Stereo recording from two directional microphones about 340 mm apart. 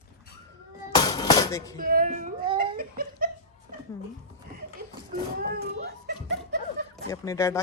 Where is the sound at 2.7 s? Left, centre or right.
Right.